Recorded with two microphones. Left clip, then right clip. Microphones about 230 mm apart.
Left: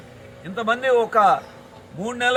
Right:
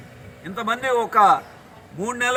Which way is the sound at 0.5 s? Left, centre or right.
Centre.